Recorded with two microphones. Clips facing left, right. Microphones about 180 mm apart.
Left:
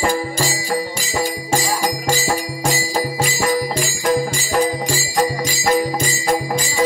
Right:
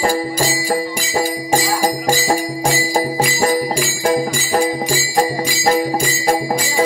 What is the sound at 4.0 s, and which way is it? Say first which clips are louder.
Jingle bell: right 1 dB; 40° right (ahead or behind).